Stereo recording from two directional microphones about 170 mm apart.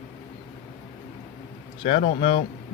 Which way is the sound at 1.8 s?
40° left (ahead or behind).